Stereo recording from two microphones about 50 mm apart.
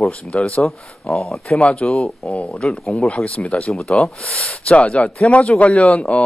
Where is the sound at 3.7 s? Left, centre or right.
Centre.